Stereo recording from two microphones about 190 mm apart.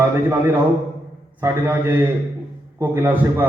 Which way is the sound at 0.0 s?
10° right (ahead or behind).